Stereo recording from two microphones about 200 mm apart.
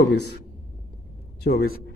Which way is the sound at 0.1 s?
60° left (ahead or behind).